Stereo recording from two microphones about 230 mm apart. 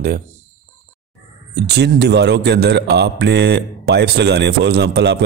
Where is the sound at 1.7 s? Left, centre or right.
Right.